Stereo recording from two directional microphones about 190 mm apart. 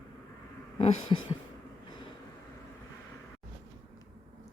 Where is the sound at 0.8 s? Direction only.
30° left (ahead or behind).